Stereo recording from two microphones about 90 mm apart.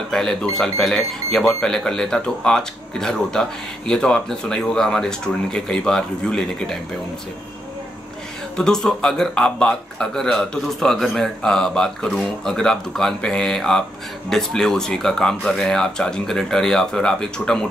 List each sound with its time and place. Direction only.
0.1 s speech: 5° left (ahead or behind)
8.5 s speech: 5° left (ahead or behind)